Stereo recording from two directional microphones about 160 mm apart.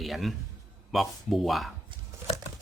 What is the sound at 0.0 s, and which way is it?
A man's voice, centre (ahead or behind).